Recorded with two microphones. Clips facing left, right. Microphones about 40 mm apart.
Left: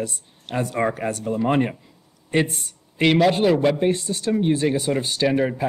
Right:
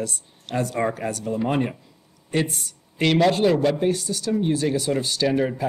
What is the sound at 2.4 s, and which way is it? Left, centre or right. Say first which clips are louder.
Speech: even; left.